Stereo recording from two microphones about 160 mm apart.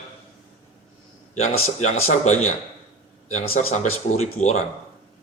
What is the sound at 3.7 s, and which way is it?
Speech, 45° left (ahead or behind).